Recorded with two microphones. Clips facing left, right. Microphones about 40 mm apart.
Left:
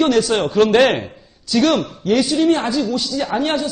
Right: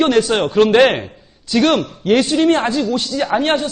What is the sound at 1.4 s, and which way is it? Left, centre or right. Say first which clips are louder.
A man's voice: right 1 dB; right.